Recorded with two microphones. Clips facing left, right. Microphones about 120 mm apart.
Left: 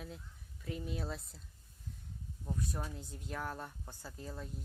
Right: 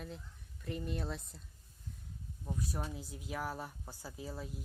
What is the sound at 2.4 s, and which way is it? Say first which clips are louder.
Speech: even; 5° right (ahead or behind).